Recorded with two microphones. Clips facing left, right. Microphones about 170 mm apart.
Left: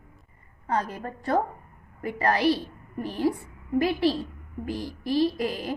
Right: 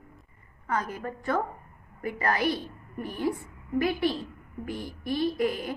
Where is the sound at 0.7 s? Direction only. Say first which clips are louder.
Left 2 dB; 30° left (ahead or behind).